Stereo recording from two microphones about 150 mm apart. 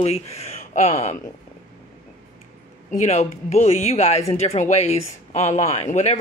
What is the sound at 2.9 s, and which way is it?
Speech, 50° left (ahead or behind).